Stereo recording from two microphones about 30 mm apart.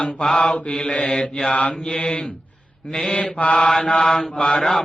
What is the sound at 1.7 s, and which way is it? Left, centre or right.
Mantra, left.